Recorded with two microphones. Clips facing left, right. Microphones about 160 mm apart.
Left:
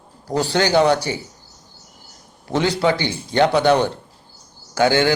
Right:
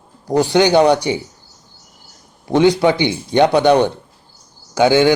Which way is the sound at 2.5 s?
15° right (ahead or behind).